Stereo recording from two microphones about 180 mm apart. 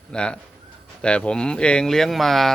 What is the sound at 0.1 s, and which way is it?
Speech, 5° left (ahead or behind).